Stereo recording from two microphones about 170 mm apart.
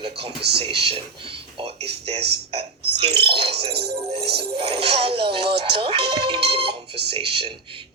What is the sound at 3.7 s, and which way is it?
Speech, 70° right (ahead or behind).